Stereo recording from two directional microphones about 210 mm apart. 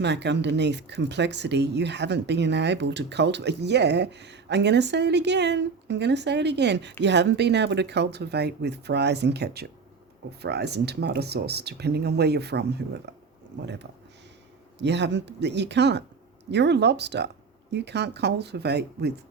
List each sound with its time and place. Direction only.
0.0 s speech: 55° right (ahead or behind)
14.8 s speech: 55° right (ahead or behind)